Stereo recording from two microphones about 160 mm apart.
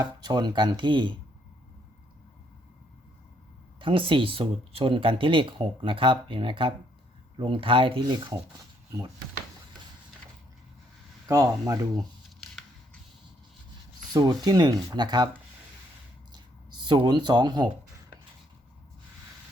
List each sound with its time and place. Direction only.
0.0 s speech: 25° right (ahead or behind)
3.8 s speech: 35° right (ahead or behind)
11.3 s speech: 20° right (ahead or behind)
11.9 s scissors: centre (ahead or behind)
14.1 s speech: 25° right (ahead or behind)
16.3 s a sound: 25° right (ahead or behind)